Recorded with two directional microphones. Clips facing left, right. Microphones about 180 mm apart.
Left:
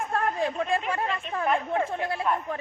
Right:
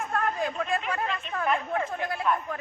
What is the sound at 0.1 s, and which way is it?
Speech, 30° left (ahead or behind).